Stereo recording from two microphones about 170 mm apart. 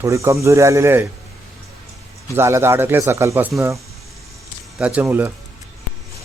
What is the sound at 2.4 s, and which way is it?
Speech, 15° right (ahead or behind).